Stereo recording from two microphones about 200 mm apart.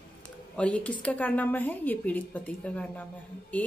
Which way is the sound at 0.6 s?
5° left (ahead or behind).